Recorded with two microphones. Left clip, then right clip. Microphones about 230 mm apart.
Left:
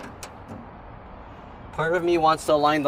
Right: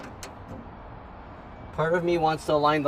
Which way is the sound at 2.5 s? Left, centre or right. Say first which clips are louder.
Left 2 dB; left.